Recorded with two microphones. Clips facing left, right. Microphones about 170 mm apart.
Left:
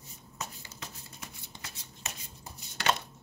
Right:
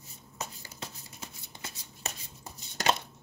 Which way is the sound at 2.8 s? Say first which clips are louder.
Right 2 dB; 40° right (ahead or behind).